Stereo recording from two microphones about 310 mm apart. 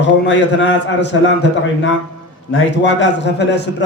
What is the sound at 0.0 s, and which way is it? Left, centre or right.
A man's voice, left.